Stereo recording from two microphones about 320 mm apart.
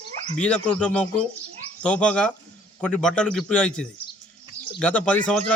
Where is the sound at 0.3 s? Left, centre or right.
Centre.